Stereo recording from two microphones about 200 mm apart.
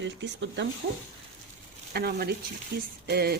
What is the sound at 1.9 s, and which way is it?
Speech, 50° right (ahead or behind).